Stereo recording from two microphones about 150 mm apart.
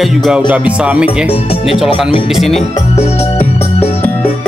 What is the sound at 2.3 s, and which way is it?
Music, centre (ahead or behind).